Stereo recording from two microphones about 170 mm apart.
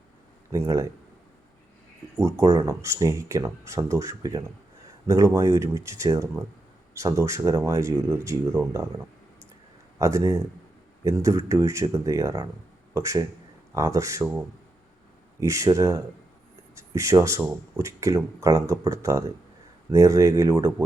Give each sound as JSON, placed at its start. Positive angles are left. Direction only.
{"t": 0.5, "sound": "speech", "side_deg": -15}
{"t": 2.1, "sound": "speech", "side_deg": -20}
{"t": 10.0, "sound": "speech", "side_deg": -20}
{"t": 15.4, "sound": "speech", "side_deg": -20}